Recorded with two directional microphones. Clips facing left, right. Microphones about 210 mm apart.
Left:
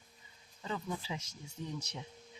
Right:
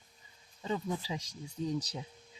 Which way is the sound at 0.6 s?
30° right (ahead or behind).